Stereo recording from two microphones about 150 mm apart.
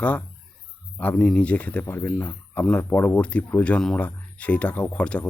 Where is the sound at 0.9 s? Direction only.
10° left (ahead or behind).